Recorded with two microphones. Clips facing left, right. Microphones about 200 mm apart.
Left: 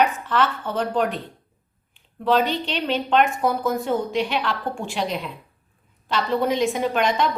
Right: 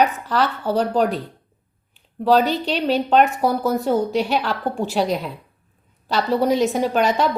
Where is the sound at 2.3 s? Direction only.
40° right (ahead or behind).